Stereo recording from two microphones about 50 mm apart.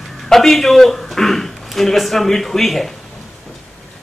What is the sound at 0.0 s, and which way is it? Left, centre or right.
Speech, centre.